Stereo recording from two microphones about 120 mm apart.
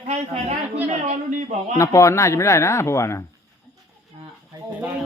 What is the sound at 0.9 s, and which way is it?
Speech, 70° right (ahead or behind).